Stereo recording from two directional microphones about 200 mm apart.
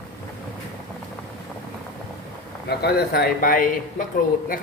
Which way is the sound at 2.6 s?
55° left (ahead or behind).